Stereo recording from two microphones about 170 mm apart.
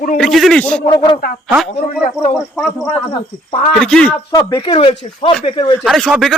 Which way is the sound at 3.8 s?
5° left (ahead or behind).